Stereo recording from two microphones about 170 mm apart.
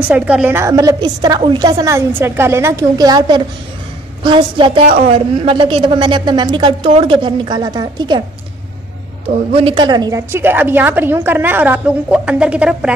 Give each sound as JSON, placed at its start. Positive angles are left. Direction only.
{"t": 0.1, "sound": "a woman's voice", "side_deg": -10}
{"t": 9.5, "sound": "a woman's voice", "side_deg": -35}